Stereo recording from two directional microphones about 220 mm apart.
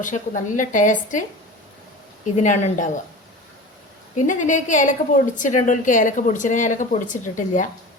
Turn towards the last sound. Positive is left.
turn(degrees=35)  # may be behind; listen again after turning